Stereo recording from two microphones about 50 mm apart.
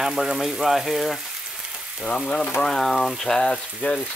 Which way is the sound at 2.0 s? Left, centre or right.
Centre.